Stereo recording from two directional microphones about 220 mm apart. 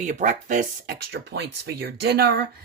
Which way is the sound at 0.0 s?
35° right (ahead or behind).